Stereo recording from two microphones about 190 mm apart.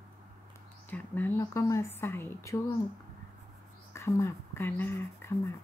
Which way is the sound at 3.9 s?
15° left (ahead or behind).